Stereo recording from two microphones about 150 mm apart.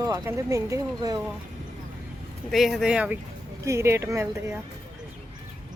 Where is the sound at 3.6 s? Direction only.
20° right (ahead or behind).